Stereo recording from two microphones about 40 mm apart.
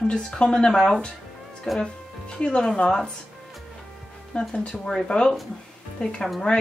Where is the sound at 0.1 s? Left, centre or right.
Left.